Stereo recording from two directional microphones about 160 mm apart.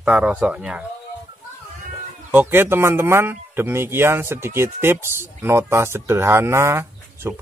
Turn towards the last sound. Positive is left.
turn(degrees=-15)  # may be behind; listen again after turning